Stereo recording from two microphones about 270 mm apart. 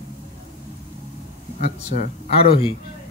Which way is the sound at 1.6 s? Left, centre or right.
Left.